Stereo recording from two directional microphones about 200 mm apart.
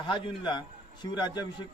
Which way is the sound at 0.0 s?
25° left (ahead or behind).